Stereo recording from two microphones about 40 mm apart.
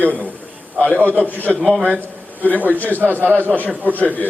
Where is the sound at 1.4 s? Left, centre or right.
Left.